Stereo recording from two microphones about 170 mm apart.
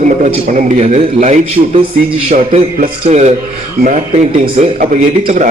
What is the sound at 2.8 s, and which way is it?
Speech, 40° right (ahead or behind).